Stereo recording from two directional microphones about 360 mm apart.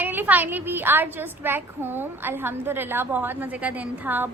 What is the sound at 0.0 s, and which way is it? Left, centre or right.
A woman's voice, centre.